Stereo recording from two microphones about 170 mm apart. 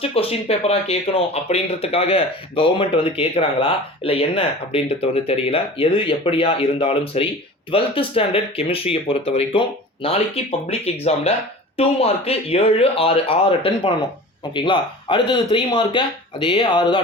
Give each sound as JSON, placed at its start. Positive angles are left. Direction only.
{"t": 0.0, "sound": "speech", "side_deg": 35}